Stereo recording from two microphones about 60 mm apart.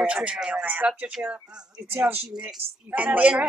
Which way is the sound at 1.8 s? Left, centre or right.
Right.